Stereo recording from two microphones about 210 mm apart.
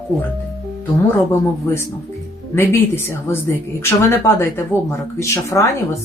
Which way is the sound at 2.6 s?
10° left (ahead or behind).